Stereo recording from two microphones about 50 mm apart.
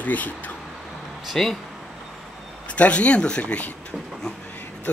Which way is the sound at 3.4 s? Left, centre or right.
Left.